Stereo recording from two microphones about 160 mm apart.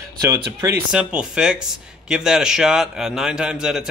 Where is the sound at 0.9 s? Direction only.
5° right (ahead or behind).